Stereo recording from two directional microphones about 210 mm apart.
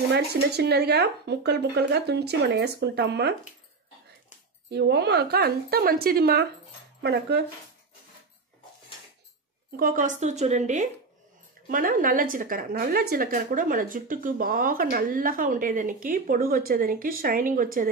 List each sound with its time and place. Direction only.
0.1 s speech: 50° right (ahead or behind)
4.6 s speech: 55° right (ahead or behind)
9.8 s speech: 40° right (ahead or behind)